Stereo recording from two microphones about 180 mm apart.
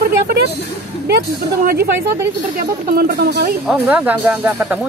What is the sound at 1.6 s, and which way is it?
Speech, 60° right (ahead or behind).